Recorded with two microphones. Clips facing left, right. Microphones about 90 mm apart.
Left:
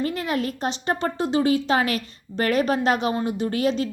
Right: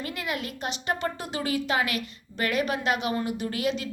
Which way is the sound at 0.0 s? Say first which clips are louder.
Left 7 dB; 35° left (ahead or behind).